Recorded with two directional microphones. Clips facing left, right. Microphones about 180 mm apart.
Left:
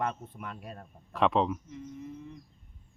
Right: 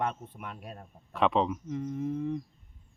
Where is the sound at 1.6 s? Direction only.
65° right (ahead or behind).